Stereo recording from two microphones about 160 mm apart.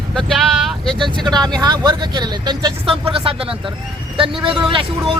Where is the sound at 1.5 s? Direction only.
25° right (ahead or behind).